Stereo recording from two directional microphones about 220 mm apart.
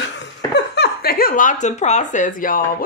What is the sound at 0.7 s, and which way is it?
A woman's voice, 45° left (ahead or behind).